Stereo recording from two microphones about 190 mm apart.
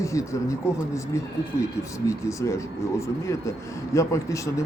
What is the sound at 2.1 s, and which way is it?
Speech, 15° left (ahead or behind).